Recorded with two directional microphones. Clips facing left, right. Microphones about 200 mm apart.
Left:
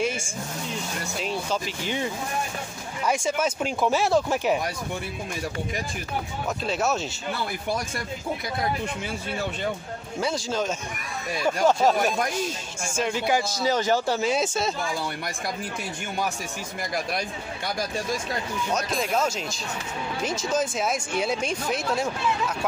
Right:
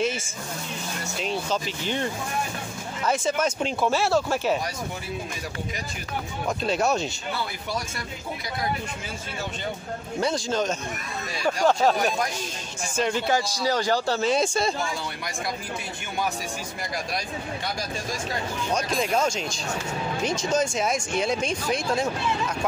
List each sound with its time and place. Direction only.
1.2 s speech: 10° left (ahead or behind)
3.1 s speech: 10° left (ahead or behind)
6.6 s speech: centre (ahead or behind)
10.2 s speech: 5° left (ahead or behind)
13.6 s speech: 20° left (ahead or behind); by 14.7 s 5° left (ahead or behind)
18.8 s speech: centre (ahead or behind)